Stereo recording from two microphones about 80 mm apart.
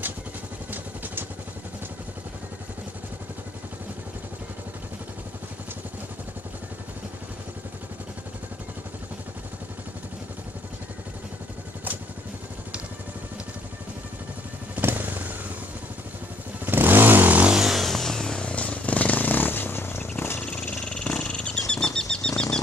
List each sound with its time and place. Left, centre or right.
0.7 s vehicle: right
14.8 s motorcycle: right
16.6 s vehicle: right
17.5 s vehicle: centre; by 20.4 s left
20.8 s wild animals: centre